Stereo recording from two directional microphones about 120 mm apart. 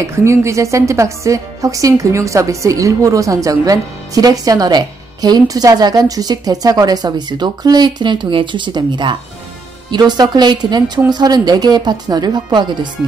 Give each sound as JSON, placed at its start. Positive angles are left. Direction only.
{"t": 0.0, "sound": "a woman's voice", "side_deg": -25}